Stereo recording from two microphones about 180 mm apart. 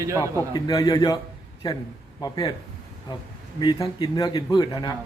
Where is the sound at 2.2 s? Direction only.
20° left (ahead or behind).